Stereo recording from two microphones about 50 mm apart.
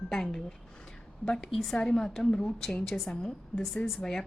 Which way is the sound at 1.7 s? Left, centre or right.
Centre.